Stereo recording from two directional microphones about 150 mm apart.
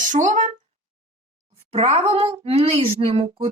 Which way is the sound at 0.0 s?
55° right (ahead or behind).